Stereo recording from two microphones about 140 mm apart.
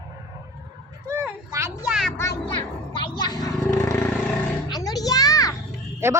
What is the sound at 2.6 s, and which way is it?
Children playing, 35° left (ahead or behind).